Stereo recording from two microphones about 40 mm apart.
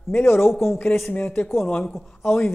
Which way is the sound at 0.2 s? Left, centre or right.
Left.